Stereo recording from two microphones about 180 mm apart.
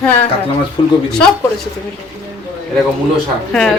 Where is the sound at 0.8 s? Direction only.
25° left (ahead or behind).